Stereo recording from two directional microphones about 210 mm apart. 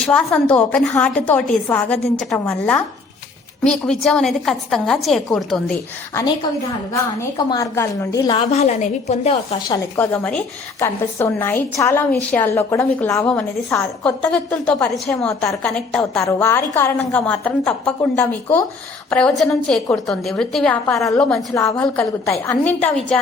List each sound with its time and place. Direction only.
0.0 s a woman's voice: 5° left (ahead or behind)
6.9 s a woman's voice: 15° left (ahead or behind); by 9.6 s 30° left (ahead or behind)
9.6 s a woman's voice: 15° left (ahead or behind)
16.2 s a woman's voice: 15° left (ahead or behind)
21.5 s a woman's voice: 15° left (ahead or behind)